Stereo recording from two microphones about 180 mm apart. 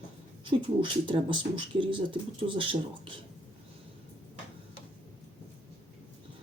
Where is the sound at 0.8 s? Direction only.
25° right (ahead or behind).